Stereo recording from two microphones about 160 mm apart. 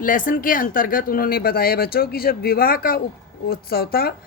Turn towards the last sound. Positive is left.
turn(degrees=75)  # may be behind; listen again after turning